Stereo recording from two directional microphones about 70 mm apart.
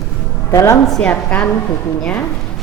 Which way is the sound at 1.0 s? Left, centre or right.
Centre.